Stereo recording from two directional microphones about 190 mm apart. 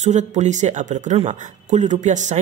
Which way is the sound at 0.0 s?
40° right (ahead or behind).